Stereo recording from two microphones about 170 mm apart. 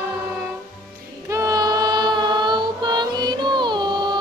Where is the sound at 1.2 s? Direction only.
20° right (ahead or behind).